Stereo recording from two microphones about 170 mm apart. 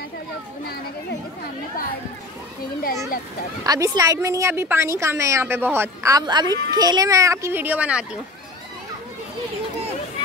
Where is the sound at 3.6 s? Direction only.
20° right (ahead or behind); by 8.2 s 5° right (ahead or behind).